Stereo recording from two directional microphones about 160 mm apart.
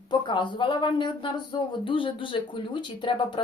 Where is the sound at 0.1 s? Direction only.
30° left (ahead or behind).